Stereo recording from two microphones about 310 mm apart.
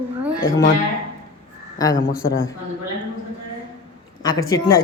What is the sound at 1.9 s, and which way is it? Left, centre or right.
Speech, left.